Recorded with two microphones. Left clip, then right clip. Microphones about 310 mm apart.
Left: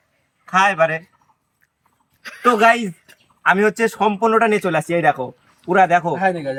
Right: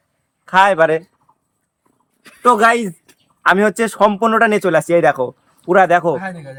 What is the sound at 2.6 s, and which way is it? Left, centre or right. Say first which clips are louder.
A man's voice: right 1 dB; centre.